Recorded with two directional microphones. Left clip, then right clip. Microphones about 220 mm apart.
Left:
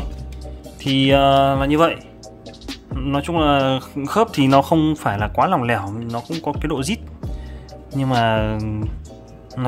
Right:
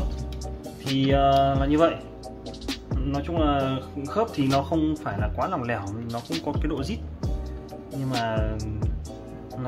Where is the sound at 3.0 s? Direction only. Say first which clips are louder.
Left 8 dB; 40° left (ahead or behind).